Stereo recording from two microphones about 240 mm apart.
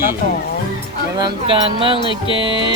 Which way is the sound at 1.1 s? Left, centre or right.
Centre.